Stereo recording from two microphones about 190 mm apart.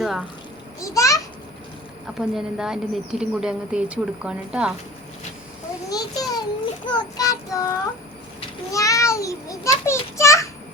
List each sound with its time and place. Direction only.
0.0 s a child's voice: 5° right (ahead or behind)
0.8 s a child's voice: 15° left (ahead or behind)
2.1 s speech: centre (ahead or behind)
5.9 s a sound: 20° left (ahead or behind)
6.9 s child singing: 20° left (ahead or behind)
8.7 s a child's voice: 15° left (ahead or behind)